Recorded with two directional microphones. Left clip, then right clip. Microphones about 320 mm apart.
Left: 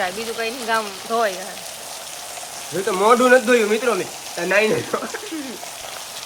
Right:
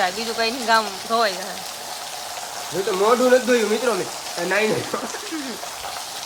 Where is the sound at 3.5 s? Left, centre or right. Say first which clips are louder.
Left 2 dB; centre.